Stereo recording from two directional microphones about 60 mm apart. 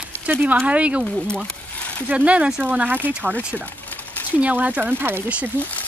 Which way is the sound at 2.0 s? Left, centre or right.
Right.